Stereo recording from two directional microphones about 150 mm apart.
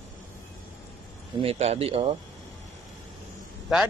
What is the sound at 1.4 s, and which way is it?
Speech, 40° right (ahead or behind).